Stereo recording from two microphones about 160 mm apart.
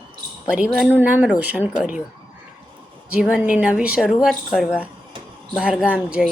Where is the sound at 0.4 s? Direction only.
5° right (ahead or behind).